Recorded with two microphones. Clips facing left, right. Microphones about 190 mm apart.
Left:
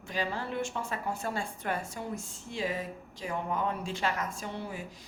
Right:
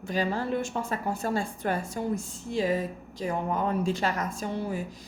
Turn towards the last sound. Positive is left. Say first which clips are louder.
# right 7 dB
turn(degrees=-40)  # may be behind; listen again after turning